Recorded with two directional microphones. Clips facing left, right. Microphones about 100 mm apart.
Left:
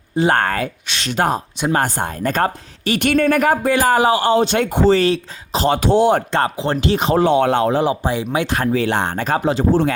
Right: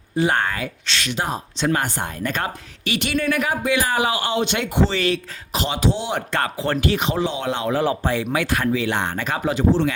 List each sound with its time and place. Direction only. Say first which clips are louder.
0.3 s speech: left 5 dB; 45° left (ahead or behind)
1.7 s a woman's voice: left 4 dB; 40° left (ahead or behind)
5.6 s speech: left 9 dB; 50° left (ahead or behind)
6.3 s speech: left 4 dB; 25° left (ahead or behind)
7.2 s speech: left 9 dB; 55° left (ahead or behind)
7.7 s speech: left 3 dB; 20° left (ahead or behind)
8.6 s a woman's voice: left 4 dB; 40° left (ahead or behind)